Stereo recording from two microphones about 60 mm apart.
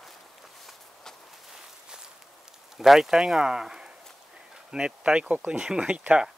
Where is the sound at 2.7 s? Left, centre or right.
Centre.